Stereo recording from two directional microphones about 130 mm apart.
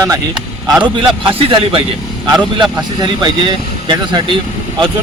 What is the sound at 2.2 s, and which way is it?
Speech, 30° right (ahead or behind).